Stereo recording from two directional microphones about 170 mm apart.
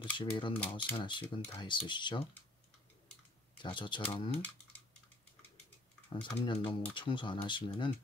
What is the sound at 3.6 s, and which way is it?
Speech, 30° left (ahead or behind).